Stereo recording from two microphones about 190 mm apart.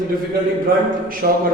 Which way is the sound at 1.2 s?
50° right (ahead or behind).